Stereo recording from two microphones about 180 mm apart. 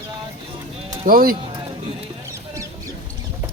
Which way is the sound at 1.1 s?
55° right (ahead or behind).